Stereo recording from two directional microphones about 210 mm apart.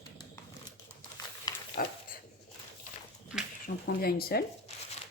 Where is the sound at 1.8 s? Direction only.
40° left (ahead or behind).